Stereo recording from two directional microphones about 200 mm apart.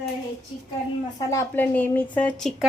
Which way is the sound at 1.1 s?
10° left (ahead or behind).